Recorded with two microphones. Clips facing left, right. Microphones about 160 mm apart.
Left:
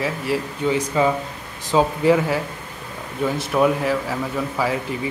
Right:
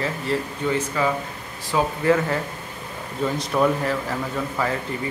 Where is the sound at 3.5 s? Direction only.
5° left (ahead or behind).